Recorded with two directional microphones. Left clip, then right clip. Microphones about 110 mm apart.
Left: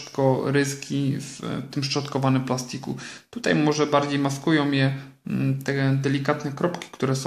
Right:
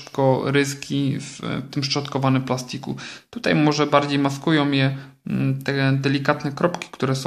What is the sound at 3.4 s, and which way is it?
Speech, 30° right (ahead or behind).